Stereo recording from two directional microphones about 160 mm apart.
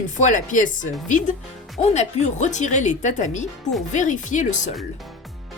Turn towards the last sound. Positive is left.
turn(degrees=0)  # may be behind; listen again after turning